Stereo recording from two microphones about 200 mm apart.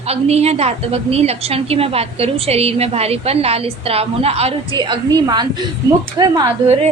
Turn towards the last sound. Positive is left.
turn(degrees=-20)  # may be behind; listen again after turning